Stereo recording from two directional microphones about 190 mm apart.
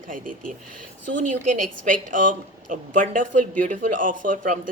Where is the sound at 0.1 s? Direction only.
45° right (ahead or behind).